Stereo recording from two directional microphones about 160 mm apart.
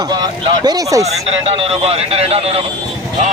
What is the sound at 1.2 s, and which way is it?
Speech, 40° right (ahead or behind).